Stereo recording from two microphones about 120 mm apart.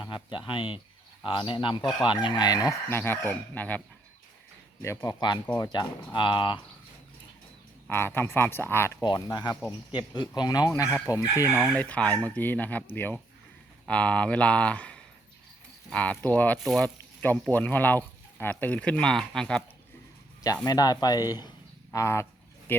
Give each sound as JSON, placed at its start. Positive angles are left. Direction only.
{"t": 0.0, "sound": "speech", "side_deg": 40}
{"t": 2.9, "sound": "speech", "side_deg": 20}
{"t": 4.8, "sound": "speech", "side_deg": 25}
{"t": 7.9, "sound": "speech", "side_deg": 20}
{"t": 9.0, "sound": "speech", "side_deg": 35}
{"t": 11.7, "sound": "speech", "side_deg": 10}
{"t": 17.2, "sound": "speech", "side_deg": 15}
{"t": 20.7, "sound": "speech", "side_deg": 35}
{"t": 21.9, "sound": "a sound", "side_deg": 25}